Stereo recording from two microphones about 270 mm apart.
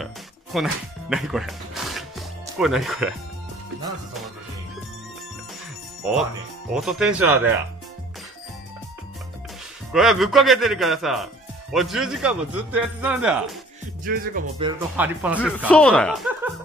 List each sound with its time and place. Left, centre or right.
0.0 s music: centre
6.0 s speech: centre
9.9 s speech: centre
14.0 s music: right
14.6 s speech: centre
15.0 s speech: centre